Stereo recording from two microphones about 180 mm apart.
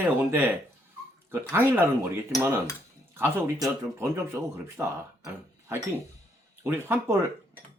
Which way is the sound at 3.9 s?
15° right (ahead or behind).